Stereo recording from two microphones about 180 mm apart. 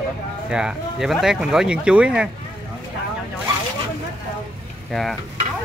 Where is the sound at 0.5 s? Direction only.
5° right (ahead or behind).